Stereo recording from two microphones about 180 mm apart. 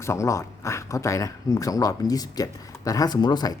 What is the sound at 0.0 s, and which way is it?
Speech, 15° left (ahead or behind).